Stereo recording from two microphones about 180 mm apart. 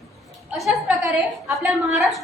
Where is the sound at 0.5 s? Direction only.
Centre (ahead or behind).